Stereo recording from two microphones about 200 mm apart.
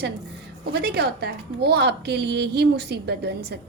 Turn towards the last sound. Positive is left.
turn(degrees=-55)  # may be behind; listen again after turning